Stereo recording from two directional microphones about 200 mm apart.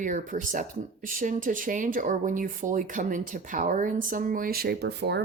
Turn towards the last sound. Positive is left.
turn(degrees=-55)  # may be behind; listen again after turning